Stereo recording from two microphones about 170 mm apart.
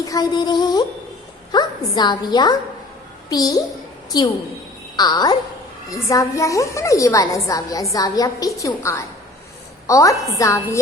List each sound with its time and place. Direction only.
0.0 s a woman's voice: 20° left (ahead or behind)